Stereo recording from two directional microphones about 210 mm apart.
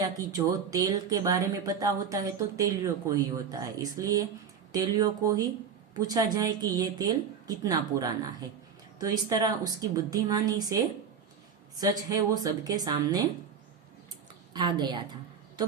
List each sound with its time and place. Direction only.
0.0 s speech: 15° right (ahead or behind)
11.8 s a woman's voice: 20° right (ahead or behind)
14.5 s a woman's voice: 20° right (ahead or behind)